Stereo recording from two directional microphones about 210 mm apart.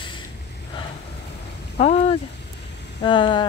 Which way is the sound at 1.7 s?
30° left (ahead or behind).